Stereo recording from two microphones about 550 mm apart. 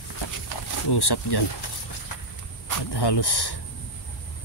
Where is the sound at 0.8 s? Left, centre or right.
Left.